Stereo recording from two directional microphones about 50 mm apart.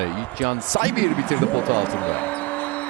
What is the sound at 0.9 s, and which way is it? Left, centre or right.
Basketball bounce, left.